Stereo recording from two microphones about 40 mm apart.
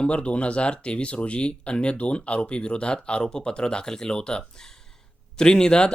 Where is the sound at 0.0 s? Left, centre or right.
Left.